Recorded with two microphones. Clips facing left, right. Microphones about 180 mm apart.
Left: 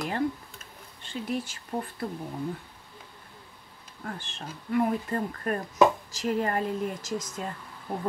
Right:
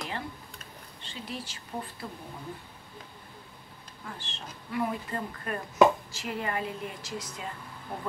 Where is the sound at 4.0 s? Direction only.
50° left (ahead or behind).